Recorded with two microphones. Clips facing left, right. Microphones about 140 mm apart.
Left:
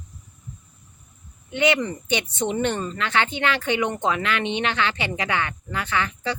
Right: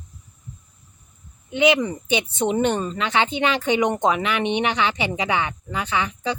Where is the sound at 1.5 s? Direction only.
15° right (ahead or behind).